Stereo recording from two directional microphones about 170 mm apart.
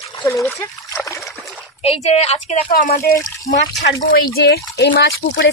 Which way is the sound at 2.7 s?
55° left (ahead or behind).